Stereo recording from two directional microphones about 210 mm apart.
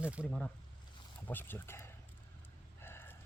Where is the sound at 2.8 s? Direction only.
10° left (ahead or behind).